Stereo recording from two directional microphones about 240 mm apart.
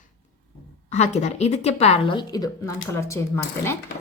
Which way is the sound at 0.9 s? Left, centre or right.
Left.